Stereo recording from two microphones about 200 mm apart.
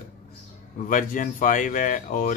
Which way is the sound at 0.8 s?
40° left (ahead or behind).